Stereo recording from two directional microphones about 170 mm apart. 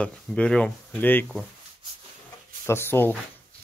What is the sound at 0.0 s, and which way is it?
Speech, 5° left (ahead or behind).